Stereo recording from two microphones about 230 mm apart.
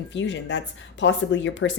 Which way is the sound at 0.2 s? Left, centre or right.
Left.